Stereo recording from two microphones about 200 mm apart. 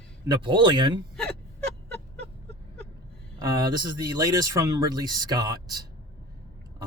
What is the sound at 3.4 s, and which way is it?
Speech, 20° right (ahead or behind).